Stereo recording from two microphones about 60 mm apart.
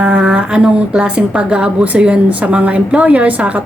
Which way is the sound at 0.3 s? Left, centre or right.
Centre.